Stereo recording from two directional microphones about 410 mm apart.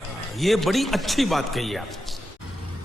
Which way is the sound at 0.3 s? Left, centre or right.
Centre.